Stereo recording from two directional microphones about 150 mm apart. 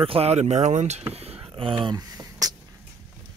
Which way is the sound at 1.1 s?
40° right (ahead or behind).